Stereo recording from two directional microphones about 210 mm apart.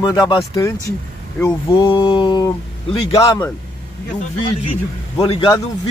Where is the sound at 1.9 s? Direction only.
25° left (ahead or behind).